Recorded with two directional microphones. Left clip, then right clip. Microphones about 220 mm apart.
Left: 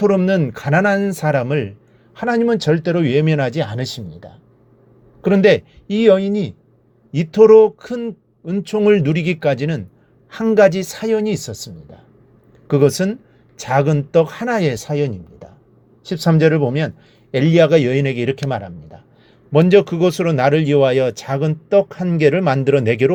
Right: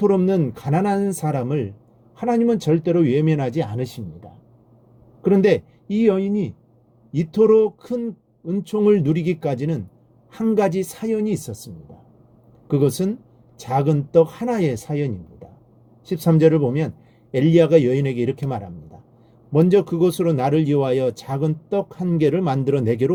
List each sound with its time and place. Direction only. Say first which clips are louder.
0.0 s speech: left 3 dB; 15° left (ahead or behind)